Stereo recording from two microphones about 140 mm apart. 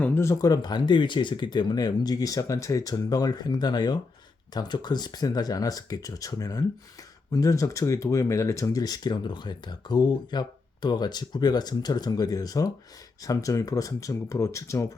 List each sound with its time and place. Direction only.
0.0 s speech: 20° left (ahead or behind)